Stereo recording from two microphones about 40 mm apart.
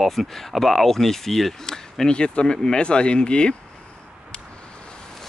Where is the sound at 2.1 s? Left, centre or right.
Left.